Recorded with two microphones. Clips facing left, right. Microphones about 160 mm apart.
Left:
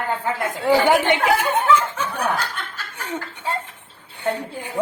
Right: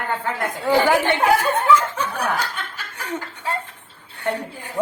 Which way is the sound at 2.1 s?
10° right (ahead or behind).